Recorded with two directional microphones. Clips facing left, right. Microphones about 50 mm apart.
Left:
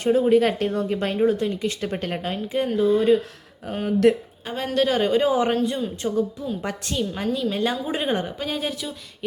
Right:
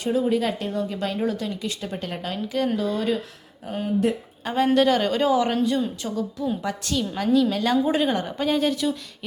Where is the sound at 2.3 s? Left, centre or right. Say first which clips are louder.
Right 1 dB; left.